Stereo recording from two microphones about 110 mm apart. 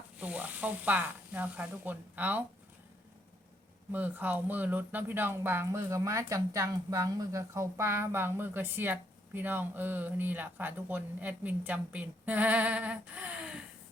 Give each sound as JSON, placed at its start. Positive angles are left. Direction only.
{"t": 0.2, "sound": "speech", "side_deg": -15}
{"t": 3.9, "sound": "speech", "side_deg": -15}